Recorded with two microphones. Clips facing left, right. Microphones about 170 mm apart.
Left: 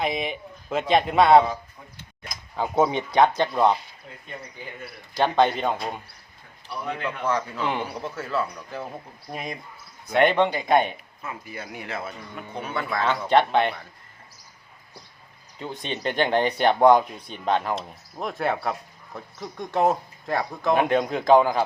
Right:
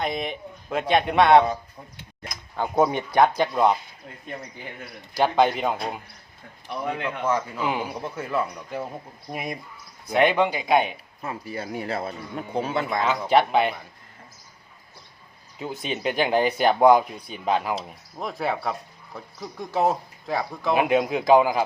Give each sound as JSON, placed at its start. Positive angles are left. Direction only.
{"t": 0.0, "sound": "speech", "side_deg": 0}
{"t": 5.1, "sound": "a man's voice", "side_deg": -5}
{"t": 7.0, "sound": "a man's voice", "side_deg": -10}
{"t": 11.2, "sound": "speech", "side_deg": -35}
{"t": 13.1, "sound": "a man's voice", "side_deg": -5}
{"t": 15.5, "sound": "speech", "side_deg": -5}